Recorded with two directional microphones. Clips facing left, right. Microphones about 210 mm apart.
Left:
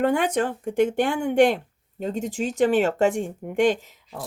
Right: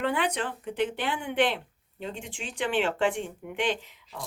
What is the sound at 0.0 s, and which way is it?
Speech, 45° left (ahead or behind).